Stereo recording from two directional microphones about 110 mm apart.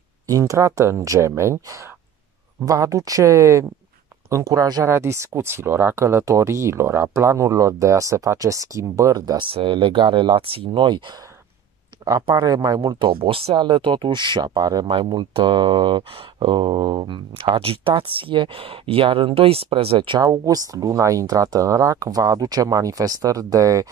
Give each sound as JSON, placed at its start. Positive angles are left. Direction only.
{"t": 0.3, "sound": "speech", "side_deg": -30}
{"t": 9.5, "sound": "speech", "side_deg": -50}
{"t": 13.2, "sound": "speech", "side_deg": -60}
{"t": 20.2, "sound": "speech", "side_deg": -35}